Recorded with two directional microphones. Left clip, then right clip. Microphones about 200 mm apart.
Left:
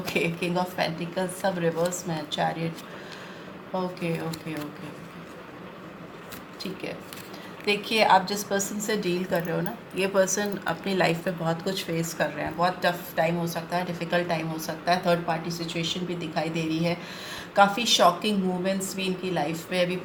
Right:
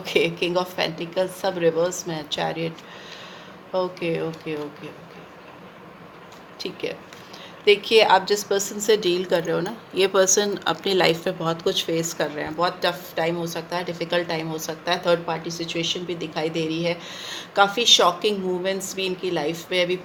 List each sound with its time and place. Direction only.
0.0 s a woman's voice: 50° right (ahead or behind)
3.8 s a woman's voice: 55° right (ahead or behind)
7.6 s a woman's voice: 50° right (ahead or behind)